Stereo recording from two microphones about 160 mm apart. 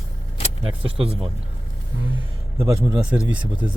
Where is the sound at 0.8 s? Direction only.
35° right (ahead or behind).